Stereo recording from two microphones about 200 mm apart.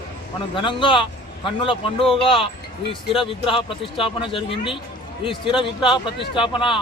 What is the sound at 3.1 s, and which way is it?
Speech, 25° left (ahead or behind).